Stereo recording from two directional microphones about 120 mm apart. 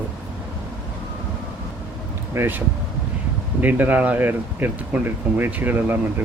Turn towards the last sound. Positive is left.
turn(degrees=-15)  # may be behind; listen again after turning